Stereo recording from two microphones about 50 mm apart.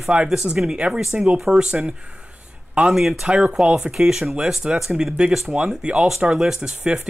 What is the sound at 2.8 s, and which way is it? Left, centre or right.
Speech, centre.